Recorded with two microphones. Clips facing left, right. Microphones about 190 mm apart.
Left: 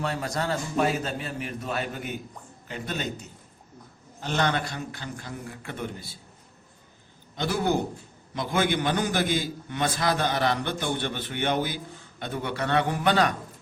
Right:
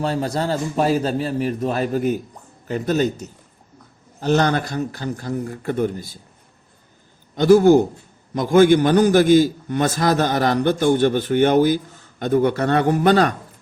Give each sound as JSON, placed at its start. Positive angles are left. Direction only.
{"t": 0.0, "sound": "a man's voice", "side_deg": -35}
{"t": 7.3, "sound": "a man's voice", "side_deg": -45}